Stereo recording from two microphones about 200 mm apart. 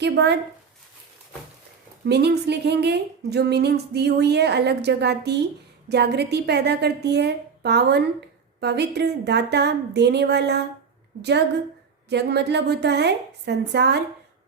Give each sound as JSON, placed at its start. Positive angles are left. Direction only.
{"t": 0.0, "sound": "speech", "side_deg": -55}
{"t": 2.0, "sound": "speech", "side_deg": -55}